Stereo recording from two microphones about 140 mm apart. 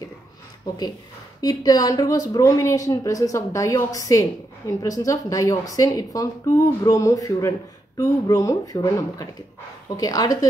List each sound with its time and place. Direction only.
0.7 s a woman's voice: 30° left (ahead or behind)